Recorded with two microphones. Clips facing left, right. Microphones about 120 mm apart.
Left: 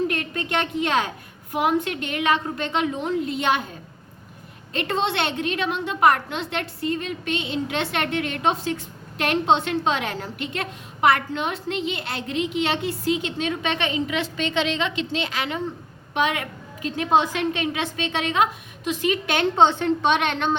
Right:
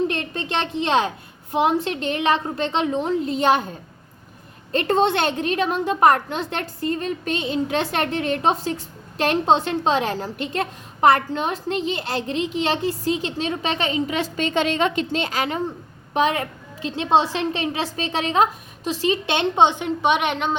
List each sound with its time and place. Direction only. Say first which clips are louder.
0.1 s a woman's voice: even; 30° right (ahead or behind)
4.7 s a woman's voice: right 5 dB; 40° right (ahead or behind); by 20.6 s 5° right (ahead or behind)